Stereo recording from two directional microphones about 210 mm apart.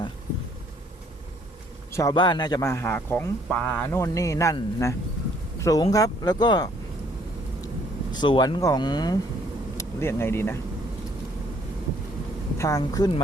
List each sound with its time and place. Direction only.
1.9 s speech: 15° left (ahead or behind)
8.1 s speech: 20° left (ahead or behind)
12.5 s speech: 15° left (ahead or behind)